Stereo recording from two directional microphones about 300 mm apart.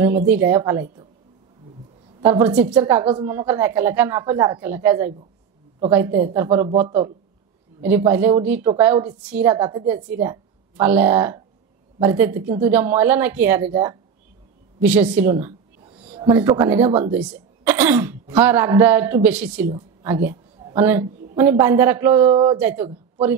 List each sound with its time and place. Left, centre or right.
0.3 s a woman's voice: centre
2.2 s a woman's voice: centre
8.1 s a woman's voice: centre
16.0 s a man's voice: centre